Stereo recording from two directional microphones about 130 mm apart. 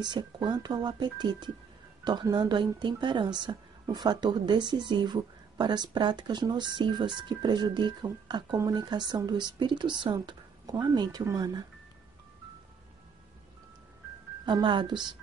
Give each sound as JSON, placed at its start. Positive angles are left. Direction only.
{"t": 0.0, "sound": "a woman's voice", "side_deg": -35}
{"t": 14.4, "sound": "a woman's voice", "side_deg": -35}